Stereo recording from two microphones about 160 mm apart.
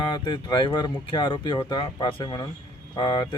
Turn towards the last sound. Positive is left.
turn(degrees=25)  # may be behind; listen again after turning